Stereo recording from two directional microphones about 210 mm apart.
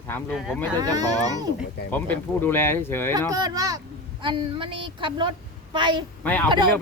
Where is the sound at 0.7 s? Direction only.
15° right (ahead or behind).